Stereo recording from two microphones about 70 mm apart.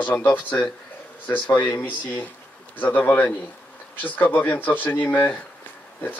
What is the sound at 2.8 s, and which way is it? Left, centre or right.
Speech, left.